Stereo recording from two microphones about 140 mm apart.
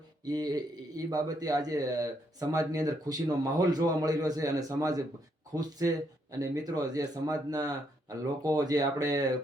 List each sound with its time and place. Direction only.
0.3 s a man's voice: 30° right (ahead or behind)